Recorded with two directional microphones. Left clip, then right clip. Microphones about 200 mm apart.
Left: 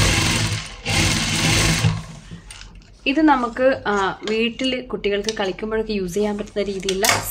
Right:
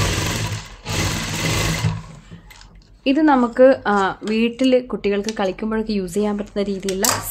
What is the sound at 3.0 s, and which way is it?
A woman's voice, 55° right (ahead or behind).